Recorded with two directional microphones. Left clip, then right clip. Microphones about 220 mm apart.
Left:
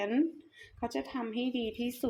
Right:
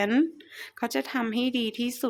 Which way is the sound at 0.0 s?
30° right (ahead or behind).